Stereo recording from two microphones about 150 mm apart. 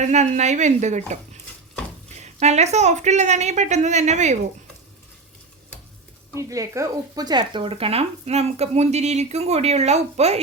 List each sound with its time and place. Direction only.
0.0 s speech: 50° right (ahead or behind)
6.3 s speech: 20° right (ahead or behind); by 10.4 s 45° right (ahead or behind)